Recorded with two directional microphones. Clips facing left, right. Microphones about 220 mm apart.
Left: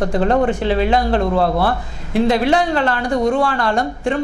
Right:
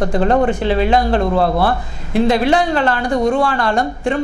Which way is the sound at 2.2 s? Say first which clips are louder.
Right 1 dB; 15° right (ahead or behind).